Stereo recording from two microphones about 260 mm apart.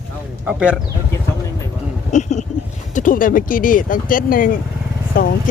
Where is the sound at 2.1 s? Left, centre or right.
Left.